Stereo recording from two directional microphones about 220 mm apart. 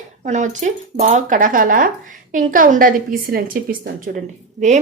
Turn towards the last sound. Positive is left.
turn(degrees=-35)  # may be behind; listen again after turning